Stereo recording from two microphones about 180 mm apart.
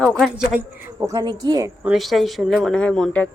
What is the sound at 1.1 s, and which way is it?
Speech, 20° right (ahead or behind).